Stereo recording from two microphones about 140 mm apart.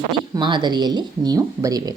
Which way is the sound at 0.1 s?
35° right (ahead or behind).